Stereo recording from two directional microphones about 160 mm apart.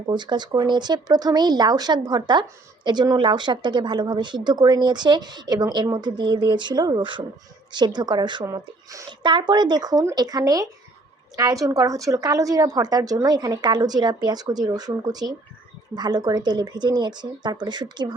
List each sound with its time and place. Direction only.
0.1 s speech: 30° right (ahead or behind)